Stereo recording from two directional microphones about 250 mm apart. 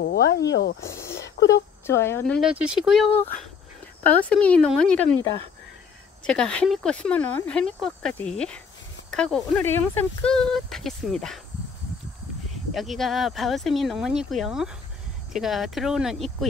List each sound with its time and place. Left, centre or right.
0.0 s speech: left
0.7 s a sound: centre
1.5 s speech: centre
12.7 s speech: centre